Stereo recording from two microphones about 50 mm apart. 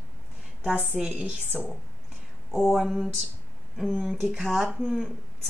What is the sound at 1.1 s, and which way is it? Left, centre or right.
Speech, right.